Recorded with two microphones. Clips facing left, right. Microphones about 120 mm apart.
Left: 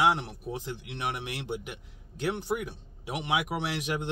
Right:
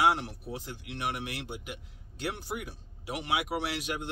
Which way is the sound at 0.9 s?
20° left (ahead or behind).